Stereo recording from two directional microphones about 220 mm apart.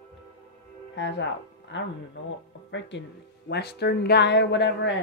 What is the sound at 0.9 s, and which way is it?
Speech, 55° left (ahead or behind).